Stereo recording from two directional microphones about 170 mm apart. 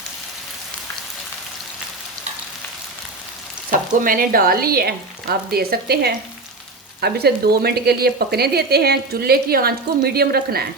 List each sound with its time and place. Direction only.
3.7 s speech: 55° right (ahead or behind)